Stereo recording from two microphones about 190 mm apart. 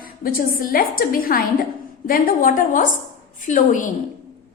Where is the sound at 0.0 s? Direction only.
50° left (ahead or behind).